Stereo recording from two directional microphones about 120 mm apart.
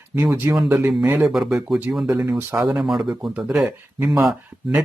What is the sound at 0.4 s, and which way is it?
Speech, 25° right (ahead or behind).